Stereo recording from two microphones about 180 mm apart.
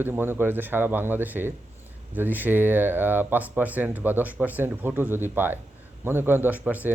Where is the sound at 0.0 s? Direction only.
10° right (ahead or behind).